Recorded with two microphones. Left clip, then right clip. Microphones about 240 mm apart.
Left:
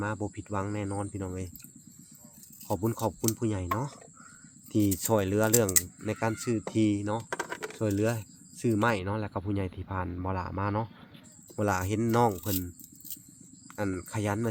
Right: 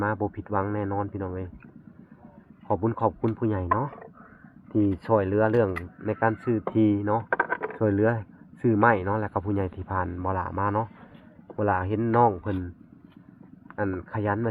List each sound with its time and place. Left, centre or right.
0.0 s speech: centre
2.6 s speech: centre
7.3 s a sound: left
7.8 s speech: centre; by 12.6 s left
13.7 s speech: left